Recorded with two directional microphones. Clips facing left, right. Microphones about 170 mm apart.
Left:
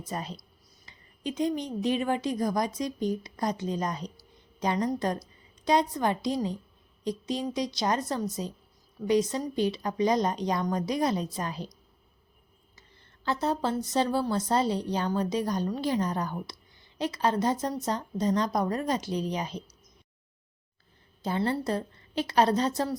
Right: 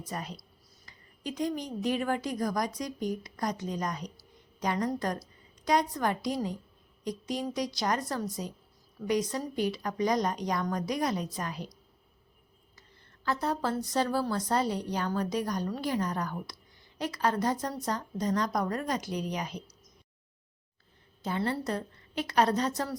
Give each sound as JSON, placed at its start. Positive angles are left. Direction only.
{"t": 0.0, "sound": "a woman's voice", "side_deg": 25}
{"t": 13.2, "sound": "a woman's voice", "side_deg": 25}
{"t": 21.2, "sound": "a woman's voice", "side_deg": 30}